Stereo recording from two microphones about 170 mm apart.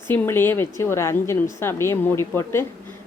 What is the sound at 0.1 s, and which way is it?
Speech, 15° left (ahead or behind).